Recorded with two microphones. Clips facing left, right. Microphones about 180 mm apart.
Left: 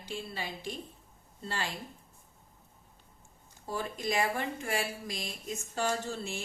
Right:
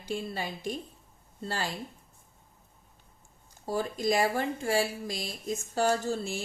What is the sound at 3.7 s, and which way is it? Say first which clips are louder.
Speech: right 6 dB; 35° right (ahead or behind).